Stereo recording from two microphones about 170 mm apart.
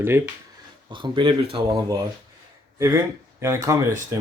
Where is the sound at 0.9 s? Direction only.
30° right (ahead or behind).